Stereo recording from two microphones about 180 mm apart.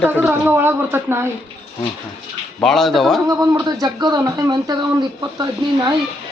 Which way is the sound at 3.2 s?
20° right (ahead or behind).